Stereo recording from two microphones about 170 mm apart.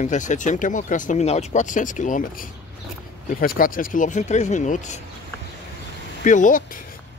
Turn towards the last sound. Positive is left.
turn(degrees=50)  # may be behind; listen again after turning